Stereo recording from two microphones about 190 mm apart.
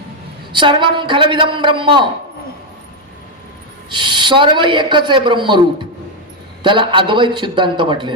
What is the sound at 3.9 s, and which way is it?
A man's voice, 25° right (ahead or behind).